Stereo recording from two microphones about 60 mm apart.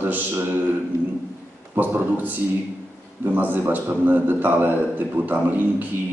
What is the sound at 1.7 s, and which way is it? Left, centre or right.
A man's voice, right.